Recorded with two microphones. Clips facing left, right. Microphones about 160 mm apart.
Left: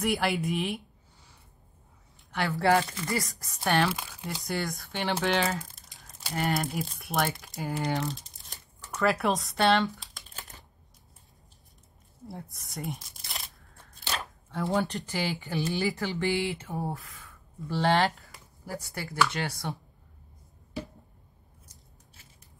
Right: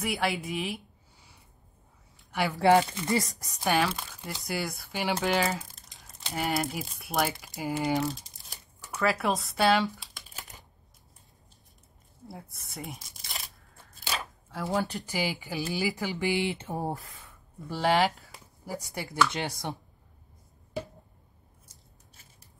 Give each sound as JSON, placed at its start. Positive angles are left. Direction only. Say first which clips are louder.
{"t": 0.0, "sound": "speech", "louder": "left 2 dB", "side_deg": 0}
{"t": 2.3, "sound": "speech", "louder": "right 3 dB", "side_deg": -15}
{"t": 3.5, "sound": "speech", "louder": "even", "side_deg": 0}
{"t": 12.3, "sound": "speech", "louder": "left 3 dB", "side_deg": 0}
{"t": 17.6, "sound": "a woman's voice", "louder": "even", "side_deg": -10}
{"t": 18.7, "sound": "a woman's voice", "louder": "right 1 dB", "side_deg": -15}